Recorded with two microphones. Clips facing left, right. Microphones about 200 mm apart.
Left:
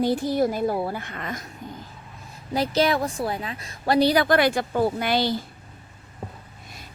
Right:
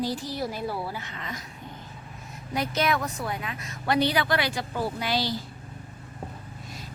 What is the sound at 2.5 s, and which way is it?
A woman's voice, 30° left (ahead or behind).